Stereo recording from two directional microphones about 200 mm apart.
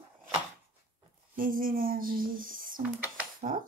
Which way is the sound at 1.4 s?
45° right (ahead or behind).